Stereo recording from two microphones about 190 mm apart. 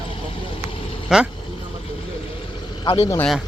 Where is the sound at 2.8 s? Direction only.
25° left (ahead or behind).